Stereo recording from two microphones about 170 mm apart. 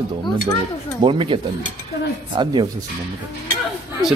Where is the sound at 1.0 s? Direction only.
30° right (ahead or behind).